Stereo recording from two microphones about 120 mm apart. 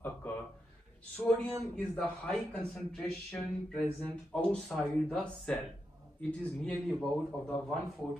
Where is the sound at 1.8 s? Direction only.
5° left (ahead or behind).